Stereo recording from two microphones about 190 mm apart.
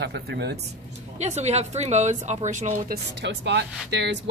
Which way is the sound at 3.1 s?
65° right (ahead or behind).